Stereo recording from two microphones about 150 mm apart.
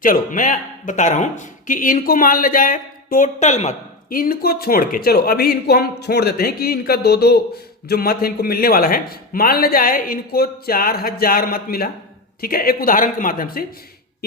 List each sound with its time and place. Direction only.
0.0 s a man's voice: 60° left (ahead or behind)
4.1 s speech: 75° left (ahead or behind)